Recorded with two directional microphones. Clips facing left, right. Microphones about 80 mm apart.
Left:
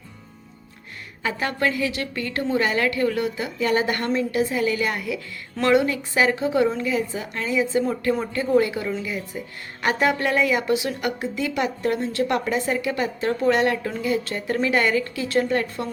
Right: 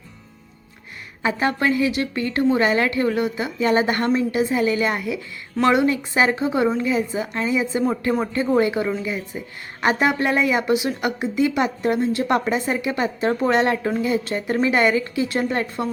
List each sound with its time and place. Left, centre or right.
1.2 s a woman's voice: right